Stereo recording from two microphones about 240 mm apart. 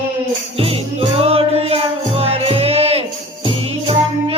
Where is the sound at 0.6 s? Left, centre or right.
Right.